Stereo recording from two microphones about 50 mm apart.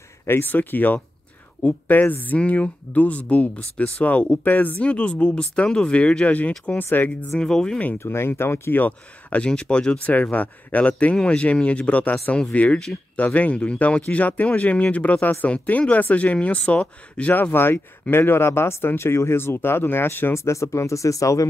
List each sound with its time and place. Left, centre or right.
0.3 s speech: left
4.5 s speech: left
4.7 s speech: left
6.8 s speech: left
7.3 s speech: centre
8.0 s speech: left
8.8 s speech: left
10.0 s speech: left
17.3 s speech: left
20.3 s speech: left